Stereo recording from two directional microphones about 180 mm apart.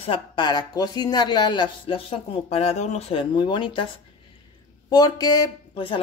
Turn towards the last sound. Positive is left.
turn(degrees=25)  # may be behind; listen again after turning